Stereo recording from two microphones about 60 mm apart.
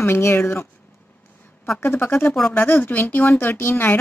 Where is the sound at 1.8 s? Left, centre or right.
Left.